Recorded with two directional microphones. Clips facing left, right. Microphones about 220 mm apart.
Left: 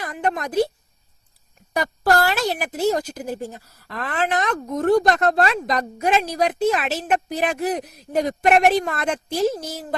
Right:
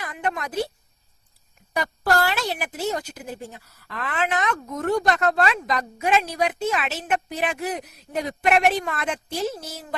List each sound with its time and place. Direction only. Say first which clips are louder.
0.0 s speech: left 4 dB; 40° left (ahead or behind)
1.7 s speech: left 3 dB; 45° left (ahead or behind)